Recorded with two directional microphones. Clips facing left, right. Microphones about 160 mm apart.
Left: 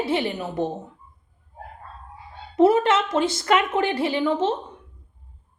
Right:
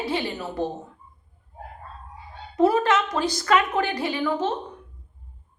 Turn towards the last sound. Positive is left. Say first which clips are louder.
# left 3 dB
turn(degrees=25)  # may be behind; listen again after turning